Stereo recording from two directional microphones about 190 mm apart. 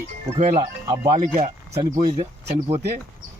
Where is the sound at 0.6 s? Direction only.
20° right (ahead or behind).